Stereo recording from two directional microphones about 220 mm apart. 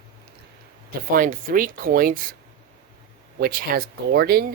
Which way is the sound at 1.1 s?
40° right (ahead or behind).